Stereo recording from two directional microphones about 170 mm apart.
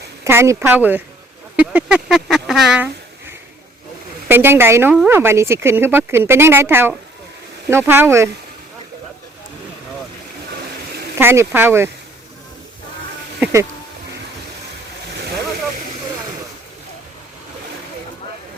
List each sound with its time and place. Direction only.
0.3 s speech: 15° right (ahead or behind)
11.2 s speech: 15° right (ahead or behind)
13.4 s a sound: 15° right (ahead or behind)